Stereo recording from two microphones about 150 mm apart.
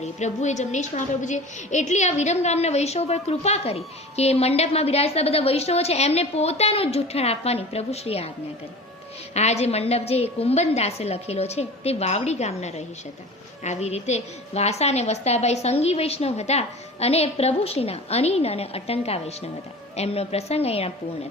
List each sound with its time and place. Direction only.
0.2 s a woman's voice: 50° left (ahead or behind)
9.3 s a woman's voice: 45° left (ahead or behind)